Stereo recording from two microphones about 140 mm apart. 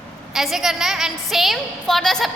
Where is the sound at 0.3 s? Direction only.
Centre (ahead or behind).